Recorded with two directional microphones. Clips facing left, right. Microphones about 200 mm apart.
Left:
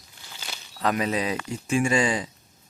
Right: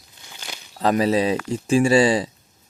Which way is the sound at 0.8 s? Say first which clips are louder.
Right 6 dB; 30° right (ahead or behind).